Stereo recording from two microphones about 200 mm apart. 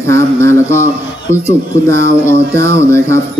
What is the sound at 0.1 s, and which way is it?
Speech, 15° left (ahead or behind).